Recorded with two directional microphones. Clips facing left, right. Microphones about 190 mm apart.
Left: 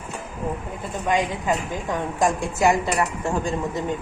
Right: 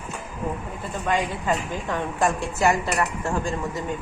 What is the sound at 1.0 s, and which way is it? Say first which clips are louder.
A woman's voice: left 2 dB; 15° left (ahead or behind).